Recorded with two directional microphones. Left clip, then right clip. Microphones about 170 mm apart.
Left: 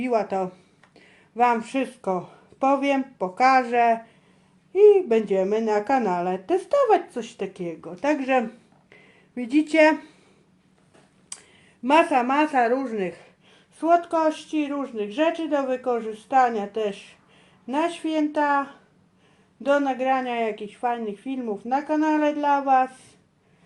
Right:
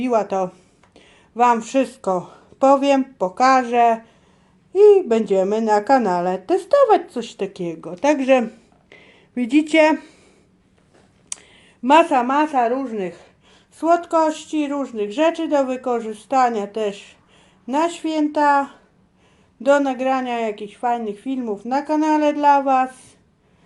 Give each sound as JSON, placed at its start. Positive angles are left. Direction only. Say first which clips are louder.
{"t": 0.0, "sound": "a woman's voice", "louder": "right 4 dB", "side_deg": -30}
{"t": 3.4, "sound": "a woman's voice", "louder": "right 3 dB", "side_deg": -30}
{"t": 8.9, "sound": "a sound", "louder": "right 6 dB", "side_deg": -55}
{"t": 11.3, "sound": "a sound", "louder": "right 8 dB", "side_deg": -45}
{"t": 11.8, "sound": "a woman's voice", "louder": "right 5 dB", "side_deg": -30}
{"t": 13.7, "sound": "a woman's voice", "louder": "right 3 dB", "side_deg": -35}